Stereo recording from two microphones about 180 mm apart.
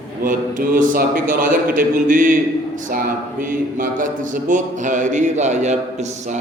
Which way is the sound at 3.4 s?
50° right (ahead or behind).